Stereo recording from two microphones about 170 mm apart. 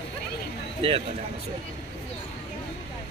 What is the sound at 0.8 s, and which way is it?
Speech, 35° right (ahead or behind).